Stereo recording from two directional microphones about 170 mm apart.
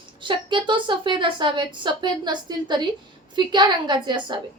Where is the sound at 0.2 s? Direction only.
30° right (ahead or behind).